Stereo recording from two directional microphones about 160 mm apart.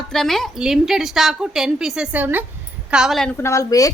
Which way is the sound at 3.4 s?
20° left (ahead or behind).